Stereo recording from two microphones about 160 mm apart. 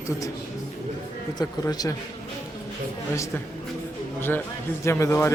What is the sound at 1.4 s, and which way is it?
Speech, 25° left (ahead or behind).